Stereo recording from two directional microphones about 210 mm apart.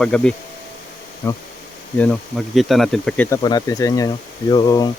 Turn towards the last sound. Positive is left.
turn(degrees=20)  # may be behind; listen again after turning